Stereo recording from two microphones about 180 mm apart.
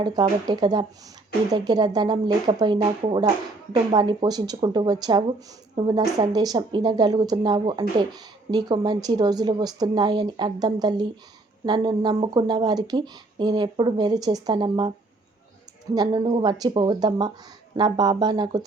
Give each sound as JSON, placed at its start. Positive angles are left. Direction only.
{"t": 0.0, "sound": "speech", "side_deg": -25}
{"t": 16.0, "sound": "speech", "side_deg": -25}